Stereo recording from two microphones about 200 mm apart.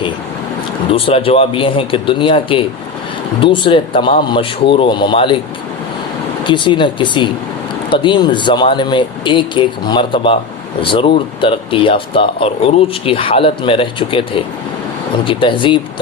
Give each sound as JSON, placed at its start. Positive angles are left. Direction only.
{"t": 0.9, "sound": "speech", "side_deg": 25}
{"t": 6.4, "sound": "speech", "side_deg": 25}